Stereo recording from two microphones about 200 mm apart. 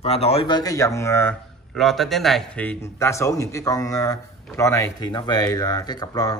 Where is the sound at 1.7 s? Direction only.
Centre (ahead or behind); by 6.4 s 20° left (ahead or behind).